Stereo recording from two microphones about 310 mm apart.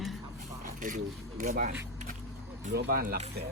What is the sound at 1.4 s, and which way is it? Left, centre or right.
Speech, right.